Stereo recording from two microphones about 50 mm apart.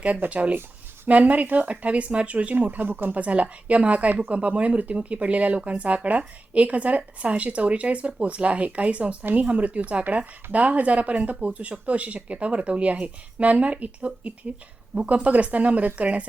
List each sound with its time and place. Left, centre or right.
0.3 s a woman's voice: right
3.2 s a woman's voice: right